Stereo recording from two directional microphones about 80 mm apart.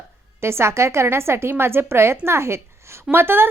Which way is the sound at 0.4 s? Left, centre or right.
Right.